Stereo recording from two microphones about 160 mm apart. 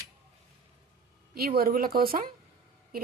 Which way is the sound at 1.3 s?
70° right (ahead or behind).